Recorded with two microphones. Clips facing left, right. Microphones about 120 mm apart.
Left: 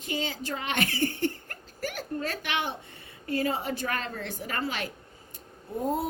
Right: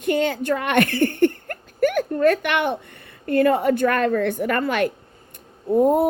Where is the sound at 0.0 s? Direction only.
55° right (ahead or behind).